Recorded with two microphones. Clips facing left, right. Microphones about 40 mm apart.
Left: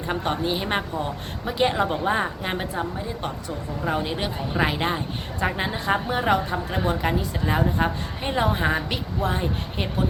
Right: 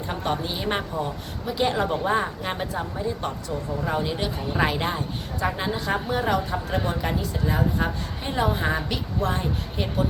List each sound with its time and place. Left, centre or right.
0.1 s a woman's voice: centre
5.4 s speech: left